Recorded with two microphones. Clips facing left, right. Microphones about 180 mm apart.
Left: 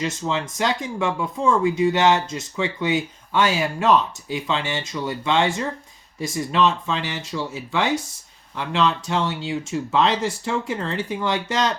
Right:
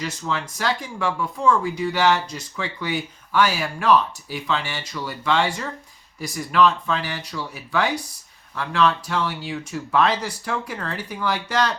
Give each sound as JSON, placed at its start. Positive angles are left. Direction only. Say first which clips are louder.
{"t": 0.0, "sound": "speech", "louder": "left 3 dB", "side_deg": 25}